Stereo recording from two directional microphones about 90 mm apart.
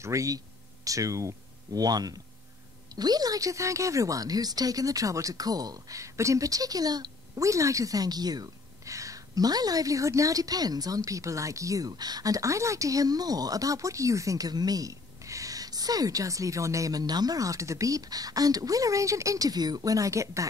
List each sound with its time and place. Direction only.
0.0 s speech: 35° right (ahead or behind)